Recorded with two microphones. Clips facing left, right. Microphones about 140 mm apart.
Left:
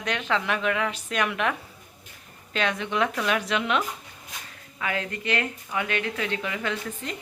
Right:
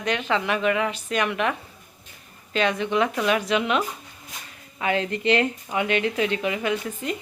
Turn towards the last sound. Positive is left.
turn(degrees=-15)  # may be behind; listen again after turning